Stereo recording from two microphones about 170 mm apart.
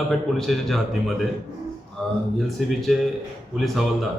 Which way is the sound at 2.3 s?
Centre (ahead or behind).